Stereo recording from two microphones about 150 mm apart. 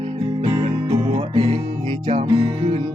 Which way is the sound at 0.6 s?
35° right (ahead or behind).